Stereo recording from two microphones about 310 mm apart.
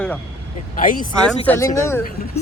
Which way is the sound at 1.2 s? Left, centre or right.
Centre.